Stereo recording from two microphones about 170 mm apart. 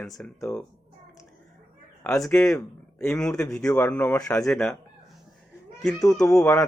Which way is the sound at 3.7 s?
15° left (ahead or behind).